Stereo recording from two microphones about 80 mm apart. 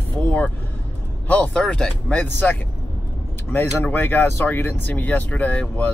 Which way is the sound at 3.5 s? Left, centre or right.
Left.